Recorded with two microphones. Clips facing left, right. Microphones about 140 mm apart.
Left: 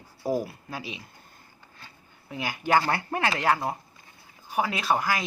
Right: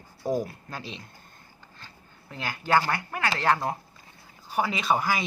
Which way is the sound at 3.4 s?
5° left (ahead or behind).